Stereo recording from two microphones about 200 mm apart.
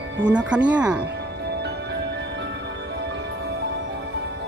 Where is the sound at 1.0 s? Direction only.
55° right (ahead or behind).